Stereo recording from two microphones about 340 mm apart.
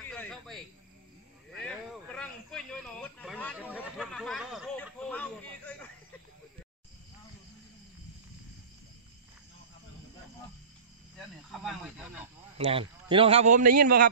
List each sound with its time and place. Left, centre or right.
0.0 s speech: centre
1.6 s speech: centre
11.5 s speech: centre
12.5 s a man's voice: centre